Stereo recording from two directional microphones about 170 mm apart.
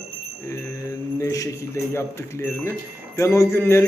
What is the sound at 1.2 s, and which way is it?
A man's voice, 20° left (ahead or behind).